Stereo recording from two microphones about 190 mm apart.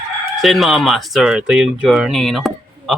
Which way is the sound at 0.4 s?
Centre (ahead or behind).